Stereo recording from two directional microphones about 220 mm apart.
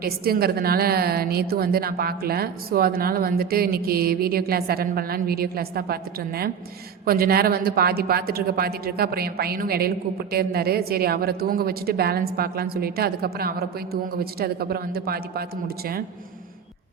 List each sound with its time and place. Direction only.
0.0 s a woman's voice: 45° right (ahead or behind)